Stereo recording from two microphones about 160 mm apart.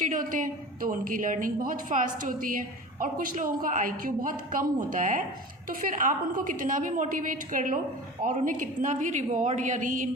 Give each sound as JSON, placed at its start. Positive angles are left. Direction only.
{"t": 0.0, "sound": "a woman's voice", "side_deg": -55}